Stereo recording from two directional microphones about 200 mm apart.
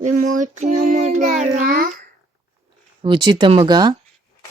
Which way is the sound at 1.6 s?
45° right (ahead or behind).